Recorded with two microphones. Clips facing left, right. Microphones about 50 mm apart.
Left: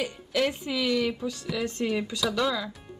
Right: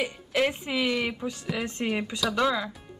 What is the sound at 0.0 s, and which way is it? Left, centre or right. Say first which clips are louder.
Speech: right 1 dB; right.